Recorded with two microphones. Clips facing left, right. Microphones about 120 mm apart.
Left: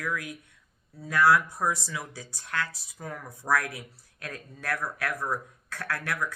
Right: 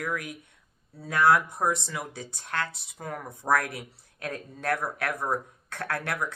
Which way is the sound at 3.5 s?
60° right (ahead or behind).